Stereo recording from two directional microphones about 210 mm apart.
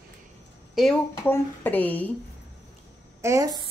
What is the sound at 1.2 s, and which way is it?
Speech, 10° left (ahead or behind).